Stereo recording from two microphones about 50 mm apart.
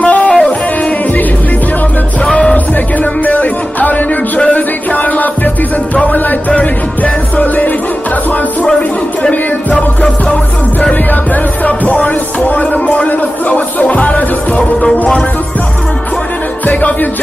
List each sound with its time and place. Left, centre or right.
0.0 s music: left
2.5 s music: left
6.5 s music: left
9.3 s music: left
14.9 s music: centre
16.6 s music: left